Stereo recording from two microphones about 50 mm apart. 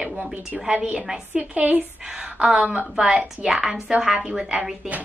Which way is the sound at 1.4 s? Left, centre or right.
Right.